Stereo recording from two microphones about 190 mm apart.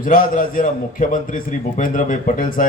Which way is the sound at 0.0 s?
45° left (ahead or behind).